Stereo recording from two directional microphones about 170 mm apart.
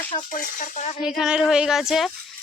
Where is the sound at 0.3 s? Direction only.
50° left (ahead or behind).